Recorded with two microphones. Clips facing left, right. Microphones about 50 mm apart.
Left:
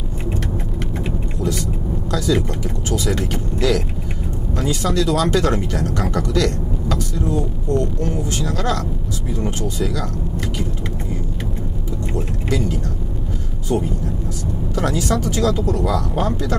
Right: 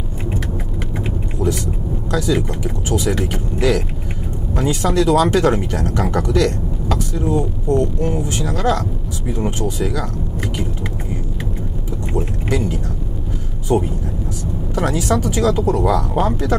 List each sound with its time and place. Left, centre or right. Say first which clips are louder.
1.0 s vehicle: right 4 dB; right
2.0 s speech: right 1 dB; right
12.1 s speech: right 3 dB; right